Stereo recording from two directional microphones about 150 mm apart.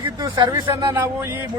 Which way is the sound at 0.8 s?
15° right (ahead or behind).